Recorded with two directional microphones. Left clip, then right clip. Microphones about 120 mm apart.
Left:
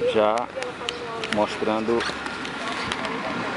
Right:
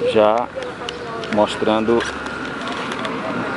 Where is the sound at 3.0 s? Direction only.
30° left (ahead or behind).